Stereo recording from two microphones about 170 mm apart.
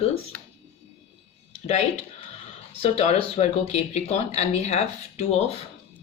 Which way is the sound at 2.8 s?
35° left (ahead or behind).